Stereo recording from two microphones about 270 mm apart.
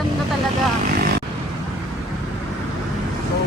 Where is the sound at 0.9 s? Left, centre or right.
Right.